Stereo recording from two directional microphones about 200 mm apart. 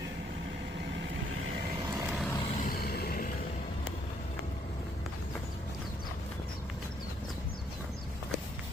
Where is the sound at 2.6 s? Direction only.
50° left (ahead or behind).